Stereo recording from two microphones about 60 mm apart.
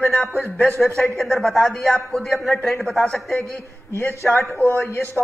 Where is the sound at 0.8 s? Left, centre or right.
Centre.